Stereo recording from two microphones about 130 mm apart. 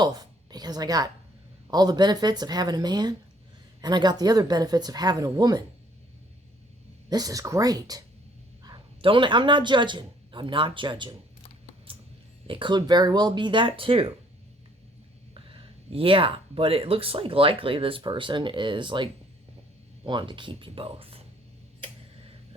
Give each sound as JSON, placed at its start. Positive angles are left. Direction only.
{"t": 0.0, "sound": "a woman's voice", "side_deg": -30}
{"t": 7.1, "sound": "speech", "side_deg": -30}
{"t": 11.9, "sound": "a sound", "side_deg": -45}
{"t": 12.5, "sound": "speech", "side_deg": -40}
{"t": 15.4, "sound": "speech", "side_deg": -40}
{"t": 20.1, "sound": "speech", "side_deg": -40}